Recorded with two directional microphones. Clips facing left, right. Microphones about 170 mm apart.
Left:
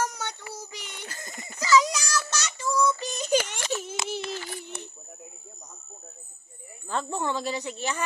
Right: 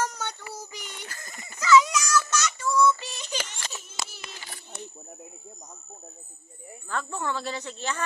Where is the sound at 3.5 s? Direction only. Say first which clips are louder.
Left 10 dB; 90° left.